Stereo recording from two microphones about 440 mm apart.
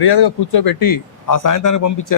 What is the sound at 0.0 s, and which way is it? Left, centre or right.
A man's voice, left.